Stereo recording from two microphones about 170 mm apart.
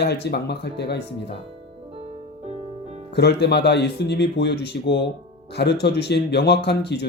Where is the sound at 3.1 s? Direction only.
80° left.